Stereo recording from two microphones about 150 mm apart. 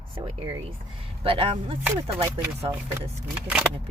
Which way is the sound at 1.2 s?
40° right (ahead or behind).